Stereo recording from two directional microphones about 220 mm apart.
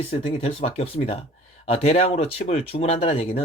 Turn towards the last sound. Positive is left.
turn(degrees=25)  # may be behind; listen again after turning